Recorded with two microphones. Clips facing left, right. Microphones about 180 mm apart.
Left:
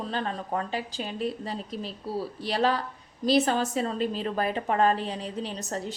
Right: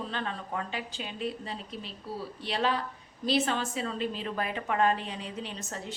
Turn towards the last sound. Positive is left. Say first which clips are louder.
# left 6 dB
turn(degrees=40)  # may be behind; listen again after turning